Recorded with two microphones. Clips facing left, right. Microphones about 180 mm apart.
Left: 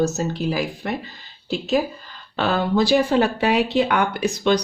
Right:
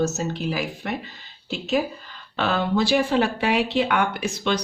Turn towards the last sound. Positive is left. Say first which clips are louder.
# left 5 dB
turn(degrees=40)  # may be behind; listen again after turning